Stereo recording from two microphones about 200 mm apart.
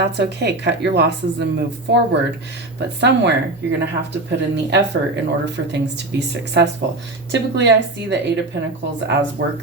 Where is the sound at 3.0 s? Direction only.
60° right (ahead or behind).